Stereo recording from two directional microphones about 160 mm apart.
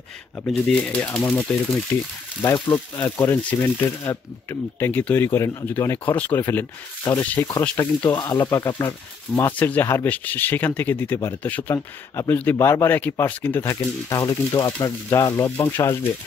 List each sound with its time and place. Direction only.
0.5 s speech: 5° left (ahead or behind)
2.4 s speech: 20° left (ahead or behind)